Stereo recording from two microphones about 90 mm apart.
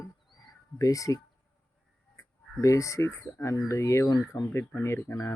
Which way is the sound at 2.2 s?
35° left (ahead or behind).